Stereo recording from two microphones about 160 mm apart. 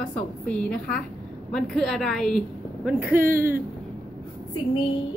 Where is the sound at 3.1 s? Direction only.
60° right (ahead or behind).